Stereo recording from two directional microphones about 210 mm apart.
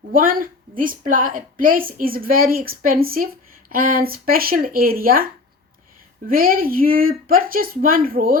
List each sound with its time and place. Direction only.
0.1 s a woman's voice: 40° right (ahead or behind)
6.2 s a woman's voice: 45° right (ahead or behind)